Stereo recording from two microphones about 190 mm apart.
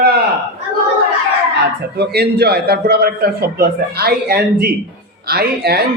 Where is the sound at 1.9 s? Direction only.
55° right (ahead or behind).